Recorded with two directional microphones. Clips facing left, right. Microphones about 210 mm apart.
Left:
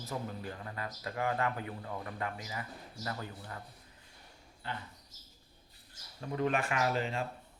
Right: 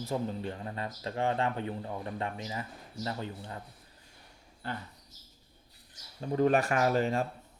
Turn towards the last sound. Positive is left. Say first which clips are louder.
# right 5 dB
turn(degrees=-45)  # may be behind; listen again after turning